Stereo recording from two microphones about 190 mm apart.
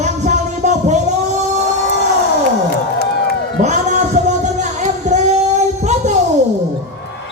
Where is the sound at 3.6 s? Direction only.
40° right (ahead or behind).